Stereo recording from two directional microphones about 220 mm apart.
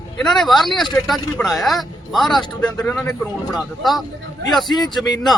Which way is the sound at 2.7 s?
15° left (ahead or behind).